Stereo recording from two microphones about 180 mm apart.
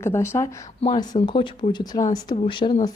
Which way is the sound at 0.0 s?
15° left (ahead or behind).